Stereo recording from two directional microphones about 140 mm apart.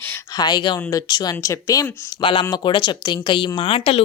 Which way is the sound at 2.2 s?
35° left (ahead or behind).